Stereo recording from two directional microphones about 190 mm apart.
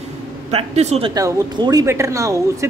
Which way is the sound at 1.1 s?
20° right (ahead or behind).